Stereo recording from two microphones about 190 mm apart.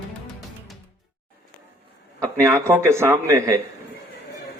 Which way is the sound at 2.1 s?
15° right (ahead or behind).